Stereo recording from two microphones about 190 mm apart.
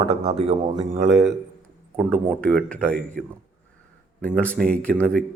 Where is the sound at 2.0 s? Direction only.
5° left (ahead or behind).